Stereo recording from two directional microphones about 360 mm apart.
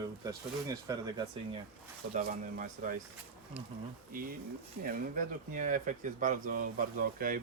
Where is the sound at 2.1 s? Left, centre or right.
Right.